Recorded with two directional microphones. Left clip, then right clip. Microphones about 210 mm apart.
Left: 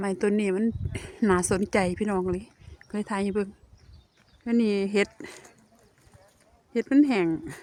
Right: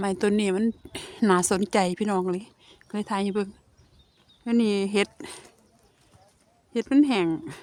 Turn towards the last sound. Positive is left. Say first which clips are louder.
# right 1 dB
turn(degrees=-10)  # may be behind; listen again after turning